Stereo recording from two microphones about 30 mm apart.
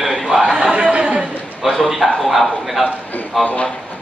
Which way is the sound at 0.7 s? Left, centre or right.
Right.